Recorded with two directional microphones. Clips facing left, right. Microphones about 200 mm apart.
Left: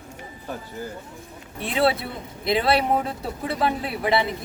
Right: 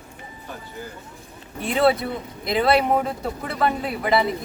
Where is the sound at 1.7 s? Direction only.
Centre (ahead or behind).